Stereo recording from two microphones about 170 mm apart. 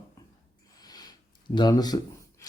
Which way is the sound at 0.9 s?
25° left (ahead or behind).